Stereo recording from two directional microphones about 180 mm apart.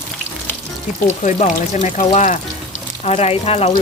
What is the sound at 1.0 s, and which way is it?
Speech, 40° left (ahead or behind).